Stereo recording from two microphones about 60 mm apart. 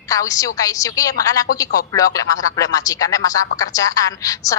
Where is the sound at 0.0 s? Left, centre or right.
Left.